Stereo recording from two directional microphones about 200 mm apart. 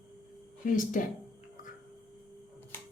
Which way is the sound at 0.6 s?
45° left (ahead or behind).